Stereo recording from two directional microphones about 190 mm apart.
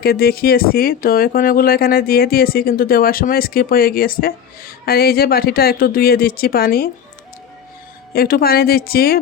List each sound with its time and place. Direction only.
0.0 s speech: 55° left (ahead or behind)
8.1 s speech: 55° left (ahead or behind)